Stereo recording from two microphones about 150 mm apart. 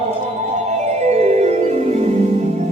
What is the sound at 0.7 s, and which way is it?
Music, 50° right (ahead or behind).